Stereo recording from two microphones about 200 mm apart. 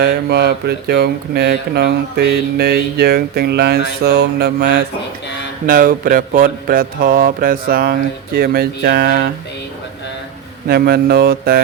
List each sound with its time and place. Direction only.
0.0 s speech: 55° right (ahead or behind)
5.6 s speech: 45° right (ahead or behind)
10.7 s speech: 50° right (ahead or behind)